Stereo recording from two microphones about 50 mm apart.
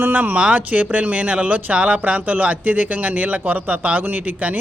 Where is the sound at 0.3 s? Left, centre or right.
Right.